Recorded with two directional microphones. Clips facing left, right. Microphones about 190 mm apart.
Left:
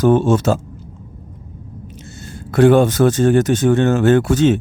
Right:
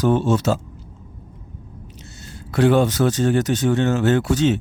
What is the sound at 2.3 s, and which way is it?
Speech, 50° left (ahead or behind).